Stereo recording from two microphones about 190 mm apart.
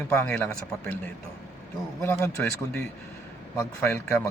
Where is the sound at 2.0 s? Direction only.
10° left (ahead or behind).